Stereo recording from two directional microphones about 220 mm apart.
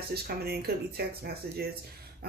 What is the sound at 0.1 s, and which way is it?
Speech, 45° right (ahead or behind).